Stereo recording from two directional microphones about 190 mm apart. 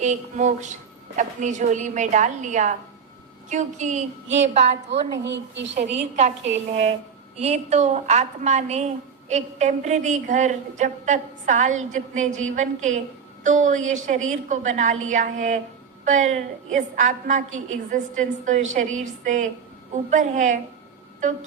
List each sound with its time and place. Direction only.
0.0 s a woman's voice: 40° right (ahead or behind)
5.2 s a woman's voice: 70° right (ahead or behind)
6.0 s a woman's voice: 35° right (ahead or behind)